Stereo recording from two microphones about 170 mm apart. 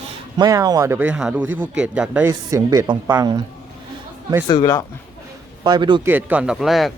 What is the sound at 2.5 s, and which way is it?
Speech, 25° right (ahead or behind).